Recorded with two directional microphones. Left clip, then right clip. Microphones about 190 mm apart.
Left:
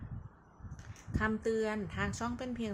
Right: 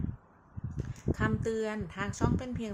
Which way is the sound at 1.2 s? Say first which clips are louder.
Even; 10° right (ahead or behind).